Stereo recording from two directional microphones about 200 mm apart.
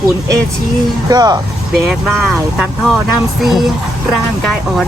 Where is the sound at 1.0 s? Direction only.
20° right (ahead or behind).